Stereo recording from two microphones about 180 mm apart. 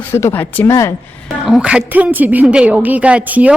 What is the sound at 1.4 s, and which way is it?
A woman's voice, 5° right (ahead or behind).